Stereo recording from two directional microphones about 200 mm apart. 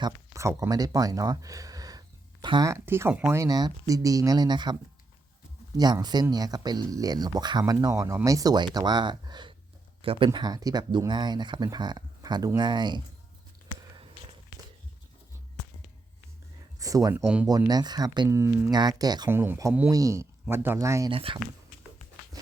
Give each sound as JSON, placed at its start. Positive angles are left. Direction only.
{"t": 0.0, "sound": "speech", "side_deg": -15}
{"t": 16.8, "sound": "speech", "side_deg": -15}
{"t": 17.2, "sound": "speech", "side_deg": -5}
{"t": 17.5, "sound": "speech", "side_deg": -20}
{"t": 21.1, "sound": "speech", "side_deg": -25}